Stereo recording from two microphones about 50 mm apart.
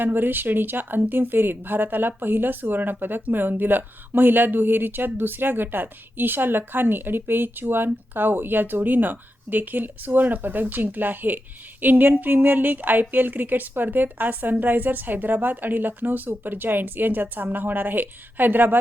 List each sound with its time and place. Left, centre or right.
0.0 s a woman's voice: right